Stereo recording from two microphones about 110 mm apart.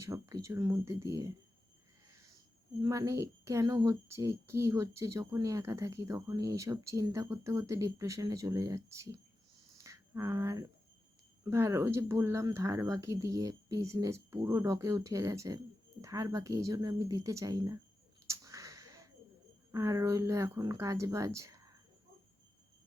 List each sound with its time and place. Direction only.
0.0 s speech: 30° right (ahead or behind)
2.8 s speech: 35° right (ahead or behind)
9.7 s a sound: 30° right (ahead or behind)
11.4 s speech: 25° right (ahead or behind)
18.3 s a sound: 30° right (ahead or behind)
19.7 s speech: 30° right (ahead or behind)